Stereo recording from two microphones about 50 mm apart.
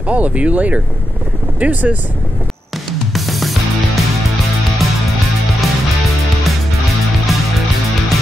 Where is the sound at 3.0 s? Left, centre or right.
Centre.